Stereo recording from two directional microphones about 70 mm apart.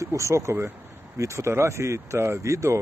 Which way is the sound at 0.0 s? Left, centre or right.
Right.